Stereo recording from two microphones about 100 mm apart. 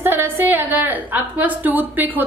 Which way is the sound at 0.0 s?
20° right (ahead or behind).